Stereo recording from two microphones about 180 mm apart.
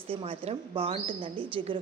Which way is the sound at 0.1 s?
30° right (ahead or behind).